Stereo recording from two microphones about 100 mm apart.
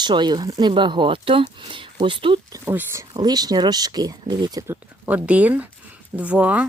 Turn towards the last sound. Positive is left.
turn(degrees=-15)  # may be behind; listen again after turning